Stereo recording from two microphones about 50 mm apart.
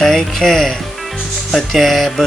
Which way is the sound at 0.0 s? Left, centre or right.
Centre.